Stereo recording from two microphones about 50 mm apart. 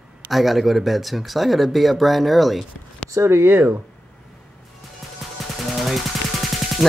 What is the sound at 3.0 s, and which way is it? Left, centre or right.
Speech, right.